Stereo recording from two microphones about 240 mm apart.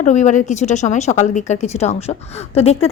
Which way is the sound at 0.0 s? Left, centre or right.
Left.